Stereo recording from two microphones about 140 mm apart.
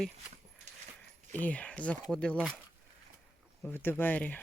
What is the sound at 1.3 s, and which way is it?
Speech, 10° left (ahead or behind).